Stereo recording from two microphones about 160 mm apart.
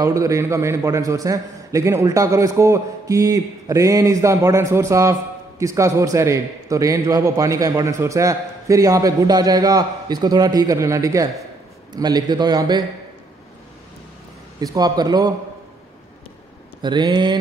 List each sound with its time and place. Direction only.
0.0 s a man's voice: 20° right (ahead or behind)
14.6 s a man's voice: 25° right (ahead or behind)
16.8 s a man's voice: 30° right (ahead or behind)